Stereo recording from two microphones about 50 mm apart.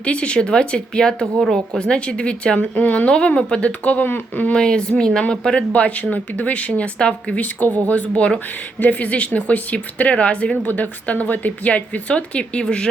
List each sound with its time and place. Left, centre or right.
0.0 s a woman's voice: left
1.4 s a woman's voice: centre
1.8 s a woman's voice: left
4.0 s speech: left
4.5 s speech: centre
5.7 s a woman's voice: left
10.6 s a woman's voice: left